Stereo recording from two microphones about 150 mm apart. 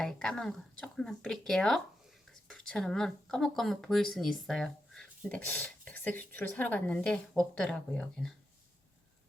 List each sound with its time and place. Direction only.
0.0 s speech: 5° left (ahead or behind)